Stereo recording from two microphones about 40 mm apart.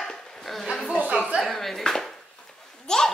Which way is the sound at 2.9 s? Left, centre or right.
Centre.